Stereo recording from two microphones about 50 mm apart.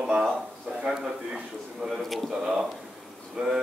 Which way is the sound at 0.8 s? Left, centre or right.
Centre.